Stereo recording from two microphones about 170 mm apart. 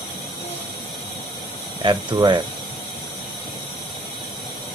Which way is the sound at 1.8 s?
25° right (ahead or behind).